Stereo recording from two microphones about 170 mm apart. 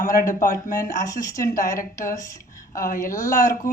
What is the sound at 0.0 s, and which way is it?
Speech, 50° left (ahead or behind).